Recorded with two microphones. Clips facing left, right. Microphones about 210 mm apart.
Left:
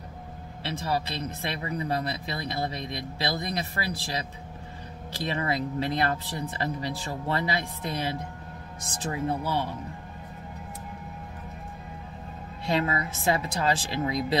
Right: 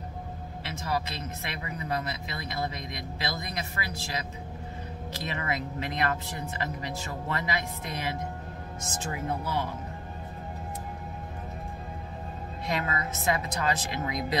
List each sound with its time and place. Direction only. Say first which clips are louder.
0.7 s speech: left 3 dB; 30° left (ahead or behind)
12.6 s speech: left 4 dB; 30° left (ahead or behind)